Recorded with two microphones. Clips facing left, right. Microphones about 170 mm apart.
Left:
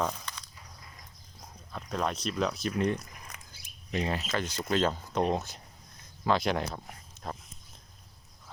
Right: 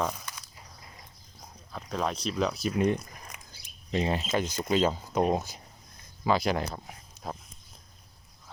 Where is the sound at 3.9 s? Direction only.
25° right (ahead or behind); by 7.3 s 5° right (ahead or behind).